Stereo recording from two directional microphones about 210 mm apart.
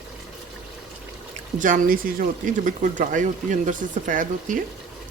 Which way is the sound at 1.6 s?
40° right (ahead or behind).